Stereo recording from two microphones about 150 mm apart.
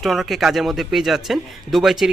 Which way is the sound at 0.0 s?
Centre (ahead or behind).